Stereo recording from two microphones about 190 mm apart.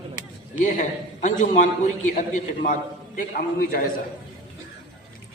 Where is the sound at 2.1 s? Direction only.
45° left (ahead or behind).